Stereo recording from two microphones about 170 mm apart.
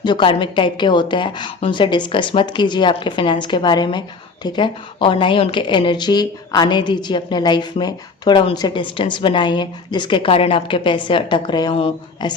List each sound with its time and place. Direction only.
0.0 s a woman's voice: 25° left (ahead or behind)